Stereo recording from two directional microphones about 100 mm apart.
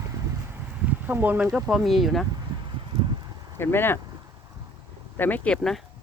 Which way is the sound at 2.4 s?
50° right (ahead or behind).